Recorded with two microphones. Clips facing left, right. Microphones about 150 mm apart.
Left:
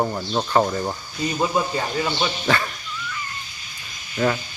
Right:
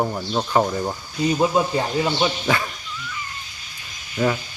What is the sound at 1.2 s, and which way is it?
Speech, 20° right (ahead or behind).